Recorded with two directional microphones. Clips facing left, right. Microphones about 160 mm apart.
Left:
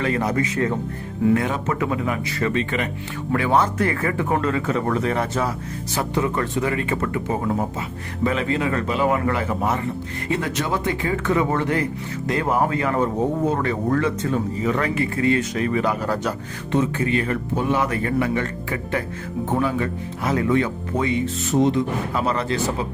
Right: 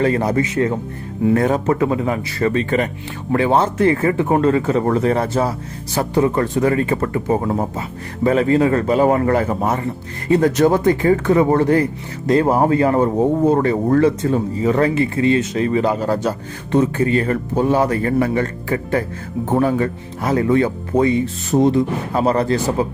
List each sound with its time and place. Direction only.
0.0 s speech: 35° right (ahead or behind)
3.3 s speech: 30° right (ahead or behind)